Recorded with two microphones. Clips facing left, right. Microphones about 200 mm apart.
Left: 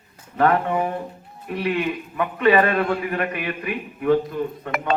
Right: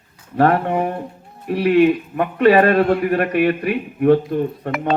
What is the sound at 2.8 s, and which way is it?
Speech, 60° right (ahead or behind).